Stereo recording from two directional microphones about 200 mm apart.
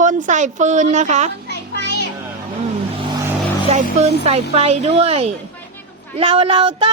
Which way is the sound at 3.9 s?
30° right (ahead or behind).